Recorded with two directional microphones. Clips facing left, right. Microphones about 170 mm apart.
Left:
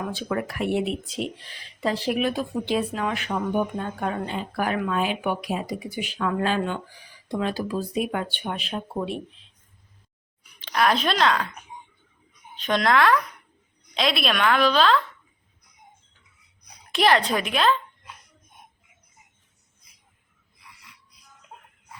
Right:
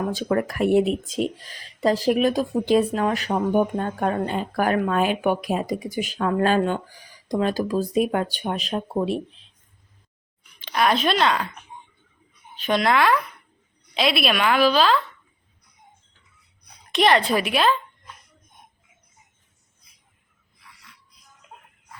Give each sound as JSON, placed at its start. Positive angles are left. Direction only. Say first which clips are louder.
{"t": 0.1, "sound": "speech", "louder": "right 5 dB", "side_deg": -45}
{"t": 10.6, "sound": "a woman's voice", "louder": "right 1 dB", "side_deg": 0}
{"t": 12.5, "sound": "a woman's voice", "louder": "right 1 dB", "side_deg": -5}
{"t": 16.9, "sound": "a woman's voice", "louder": "right 2 dB", "side_deg": 0}